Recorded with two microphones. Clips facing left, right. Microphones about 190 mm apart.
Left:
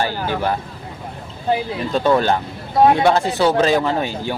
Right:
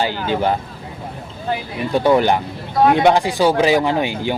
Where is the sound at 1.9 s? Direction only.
15° right (ahead or behind).